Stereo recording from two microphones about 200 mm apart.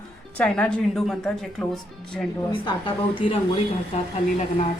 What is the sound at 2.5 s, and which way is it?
Speech, 25° left (ahead or behind).